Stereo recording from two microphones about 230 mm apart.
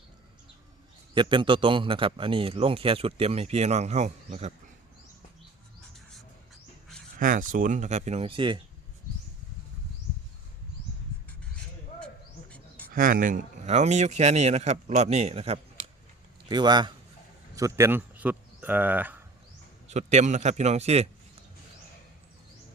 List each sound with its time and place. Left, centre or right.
1.1 s a man's voice: right
7.2 s a man's voice: right
11.9 s bird: centre
12.9 s a man's voice: right; by 19.2 s centre
19.9 s a man's voice: right